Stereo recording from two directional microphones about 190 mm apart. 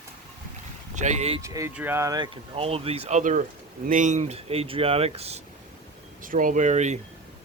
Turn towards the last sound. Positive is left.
turn(degrees=-40)  # may be behind; listen again after turning